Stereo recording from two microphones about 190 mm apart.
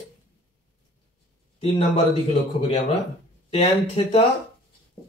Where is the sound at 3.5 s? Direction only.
35° left (ahead or behind).